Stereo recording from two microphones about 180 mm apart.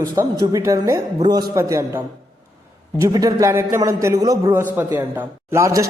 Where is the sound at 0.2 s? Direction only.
20° right (ahead or behind).